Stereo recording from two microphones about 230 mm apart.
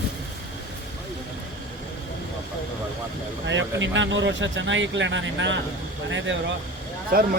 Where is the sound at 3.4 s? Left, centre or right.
Right.